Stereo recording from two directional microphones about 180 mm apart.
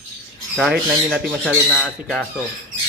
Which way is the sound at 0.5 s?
Centre (ahead or behind).